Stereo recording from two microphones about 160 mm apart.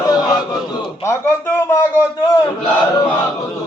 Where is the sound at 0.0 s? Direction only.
25° left (ahead or behind).